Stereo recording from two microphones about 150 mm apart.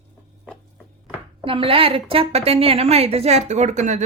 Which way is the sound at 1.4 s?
35° right (ahead or behind).